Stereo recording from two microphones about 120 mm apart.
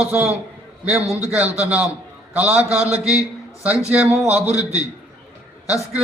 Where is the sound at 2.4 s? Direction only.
10° right (ahead or behind).